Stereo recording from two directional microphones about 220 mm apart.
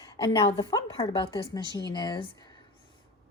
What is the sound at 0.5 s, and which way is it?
Speech, 20° left (ahead or behind).